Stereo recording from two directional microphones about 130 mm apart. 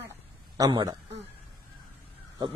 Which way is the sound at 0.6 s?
30° right (ahead or behind).